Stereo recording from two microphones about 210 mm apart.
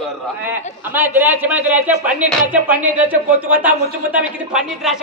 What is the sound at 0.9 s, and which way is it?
A man's voice, 10° right (ahead or behind).